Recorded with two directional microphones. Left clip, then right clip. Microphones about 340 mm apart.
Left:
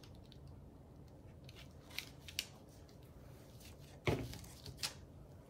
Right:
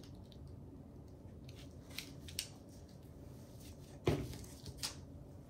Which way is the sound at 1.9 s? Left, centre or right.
Centre.